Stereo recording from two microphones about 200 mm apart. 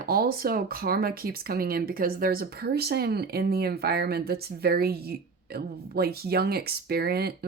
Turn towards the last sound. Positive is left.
turn(degrees=-50)  # may be behind; listen again after turning